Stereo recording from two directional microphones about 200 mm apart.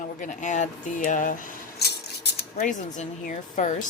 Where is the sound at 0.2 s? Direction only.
40° left (ahead or behind); by 2.6 s 55° left (ahead or behind).